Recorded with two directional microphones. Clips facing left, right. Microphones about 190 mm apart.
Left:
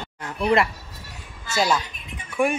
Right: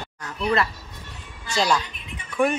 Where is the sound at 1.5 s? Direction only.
5° left (ahead or behind).